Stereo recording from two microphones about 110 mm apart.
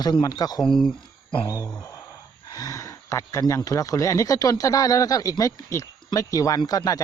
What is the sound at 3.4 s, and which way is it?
Speech, 30° left (ahead or behind).